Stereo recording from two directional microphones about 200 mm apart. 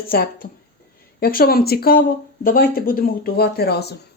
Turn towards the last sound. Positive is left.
turn(degrees=55)  # may be behind; listen again after turning